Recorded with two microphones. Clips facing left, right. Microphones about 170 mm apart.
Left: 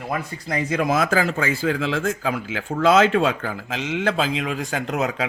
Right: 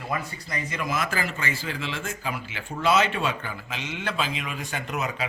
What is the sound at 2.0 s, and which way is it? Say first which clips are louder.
Speech: left 8 dB; 90° left.